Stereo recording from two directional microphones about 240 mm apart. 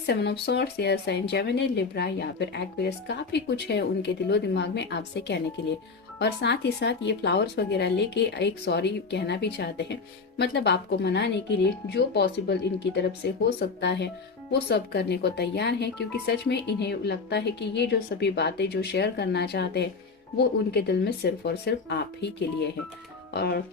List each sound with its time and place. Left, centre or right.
0.0 s speech: left
23.3 s speech: left